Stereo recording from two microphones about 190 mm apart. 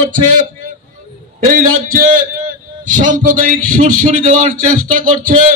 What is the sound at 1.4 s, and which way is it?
A man's voice, 45° right (ahead or behind).